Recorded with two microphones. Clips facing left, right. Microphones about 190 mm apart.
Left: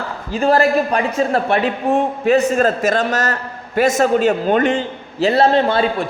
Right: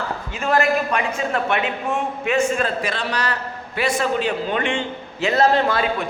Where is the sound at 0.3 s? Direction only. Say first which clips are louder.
Left 6 dB; 35° left (ahead or behind).